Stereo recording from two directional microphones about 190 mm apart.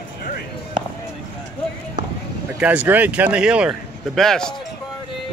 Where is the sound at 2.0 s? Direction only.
45° right (ahead or behind).